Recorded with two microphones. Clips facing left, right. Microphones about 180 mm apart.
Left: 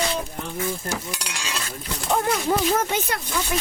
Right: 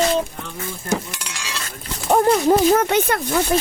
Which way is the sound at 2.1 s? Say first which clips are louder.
Right 7 dB; 50° right (ahead or behind).